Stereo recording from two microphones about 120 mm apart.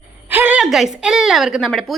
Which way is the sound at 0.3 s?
15° right (ahead or behind).